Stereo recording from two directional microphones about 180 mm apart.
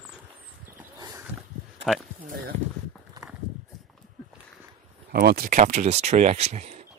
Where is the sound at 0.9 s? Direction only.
20° right (ahead or behind).